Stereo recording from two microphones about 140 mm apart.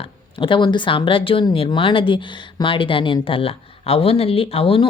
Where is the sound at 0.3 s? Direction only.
35° left (ahead or behind).